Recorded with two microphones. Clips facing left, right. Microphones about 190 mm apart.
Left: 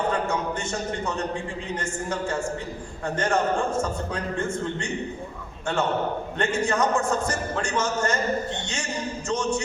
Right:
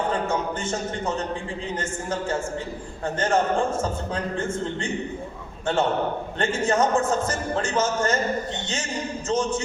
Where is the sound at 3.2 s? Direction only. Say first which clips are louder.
Right 2 dB; 30° right (ahead or behind).